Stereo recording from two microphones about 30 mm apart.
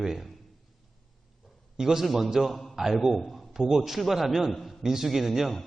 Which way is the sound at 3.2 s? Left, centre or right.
Centre.